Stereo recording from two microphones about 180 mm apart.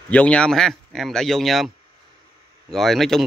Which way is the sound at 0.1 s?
5° left (ahead or behind).